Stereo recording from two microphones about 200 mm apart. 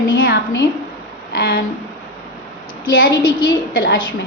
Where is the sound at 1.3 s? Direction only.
55° left (ahead or behind).